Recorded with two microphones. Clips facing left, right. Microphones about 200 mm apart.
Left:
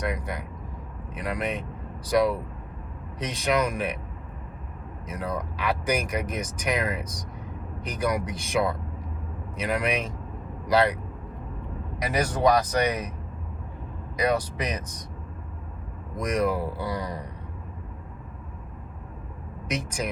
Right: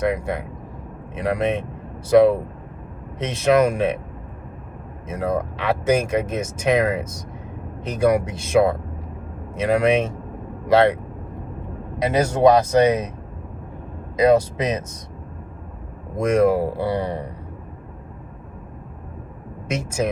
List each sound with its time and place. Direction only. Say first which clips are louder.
0.1 s speech: right 8 dB; 30° right (ahead or behind)
5.0 s speech: right 8 dB; 30° right (ahead or behind)
11.9 s speech: right 7 dB; 25° right (ahead or behind)
14.2 s speech: right 9 dB; 25° right (ahead or behind)
16.1 s speech: right 8 dB; 30° right (ahead or behind)